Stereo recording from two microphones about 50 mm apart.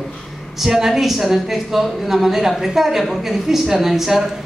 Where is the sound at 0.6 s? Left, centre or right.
Centre.